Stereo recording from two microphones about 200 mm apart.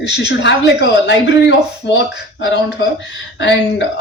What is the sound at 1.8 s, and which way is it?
Speech, 60° left (ahead or behind).